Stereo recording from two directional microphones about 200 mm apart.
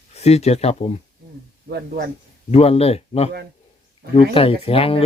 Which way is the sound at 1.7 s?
55° right (ahead or behind).